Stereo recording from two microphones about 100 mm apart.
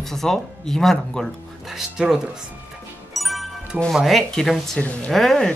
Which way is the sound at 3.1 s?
Centre (ahead or behind).